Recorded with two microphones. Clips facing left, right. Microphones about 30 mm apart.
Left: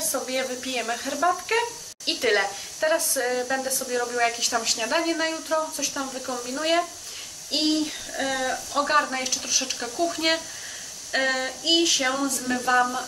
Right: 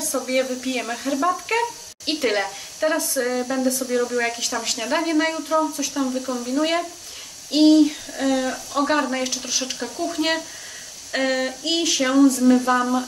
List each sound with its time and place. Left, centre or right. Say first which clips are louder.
0.1 s speech: right 6 dB; centre
9.5 s speech: right 1 dB; centre
10.0 s speech: right 2 dB; centre
11.1 s a sound: right 2 dB; centre
11.8 s speech: right 6 dB; centre